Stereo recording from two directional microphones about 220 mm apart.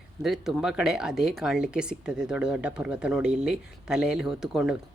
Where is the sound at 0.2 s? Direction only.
Centre (ahead or behind).